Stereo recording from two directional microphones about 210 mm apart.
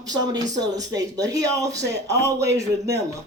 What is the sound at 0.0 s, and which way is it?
Speech, 20° right (ahead or behind).